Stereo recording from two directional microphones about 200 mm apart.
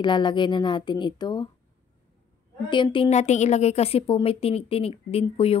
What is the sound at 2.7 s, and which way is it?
Speech, 25° left (ahead or behind).